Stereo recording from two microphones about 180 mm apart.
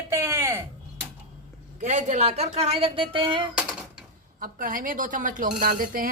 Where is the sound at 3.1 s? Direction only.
25° right (ahead or behind).